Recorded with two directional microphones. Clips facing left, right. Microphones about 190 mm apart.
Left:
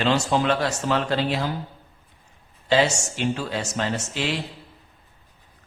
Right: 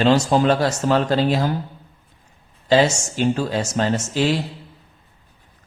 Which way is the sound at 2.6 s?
40° right (ahead or behind).